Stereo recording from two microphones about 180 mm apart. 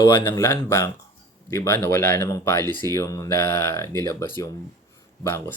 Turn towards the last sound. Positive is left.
turn(degrees=15)  # may be behind; listen again after turning